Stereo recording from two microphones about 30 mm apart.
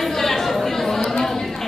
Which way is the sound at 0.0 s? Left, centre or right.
Centre.